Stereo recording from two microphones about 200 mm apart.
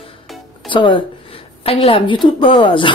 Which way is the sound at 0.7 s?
25° left (ahead or behind).